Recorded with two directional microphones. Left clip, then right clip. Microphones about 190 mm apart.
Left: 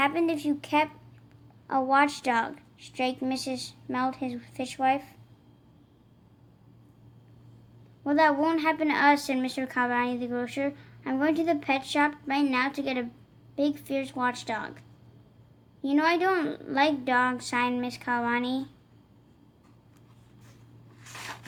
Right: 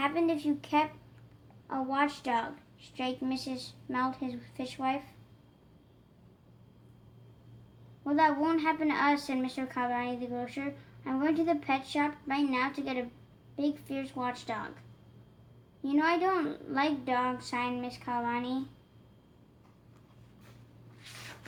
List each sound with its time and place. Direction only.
0.0 s a woman's voice: 35° left (ahead or behind)
8.0 s a woman's voice: 40° left (ahead or behind)
15.8 s a woman's voice: 45° left (ahead or behind)